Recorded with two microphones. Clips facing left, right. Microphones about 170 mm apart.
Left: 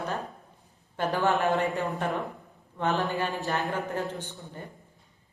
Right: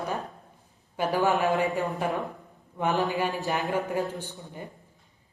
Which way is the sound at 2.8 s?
15° right (ahead or behind).